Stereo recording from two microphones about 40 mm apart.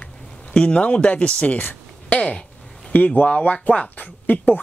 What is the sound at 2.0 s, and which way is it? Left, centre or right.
Speech, left.